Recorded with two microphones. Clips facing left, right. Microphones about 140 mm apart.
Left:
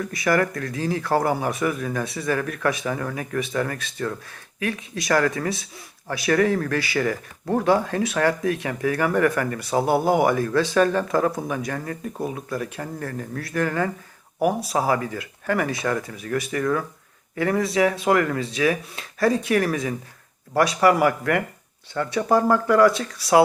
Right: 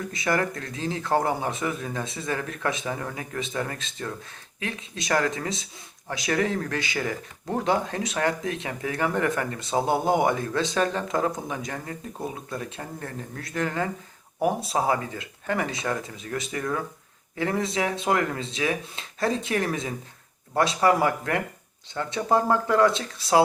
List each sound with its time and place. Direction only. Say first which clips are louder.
0.1 s speech: left 4 dB; 25° right (ahead or behind)